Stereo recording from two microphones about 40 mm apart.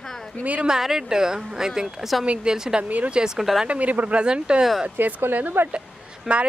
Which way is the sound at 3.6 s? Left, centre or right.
Right.